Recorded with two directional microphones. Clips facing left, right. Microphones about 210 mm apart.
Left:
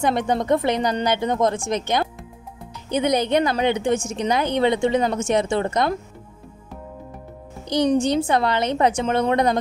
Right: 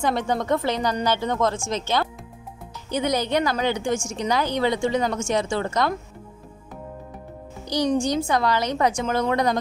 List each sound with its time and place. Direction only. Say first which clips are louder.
0.0 s a woman's voice: left 2 dB; 20° left (ahead or behind)
3.9 s a woman's voice: left 3 dB; 60° left (ahead or behind)
4.3 s a woman's voice: left 3 dB; 20° left (ahead or behind)
8.1 s a woman's voice: left 2 dB; 25° left (ahead or behind)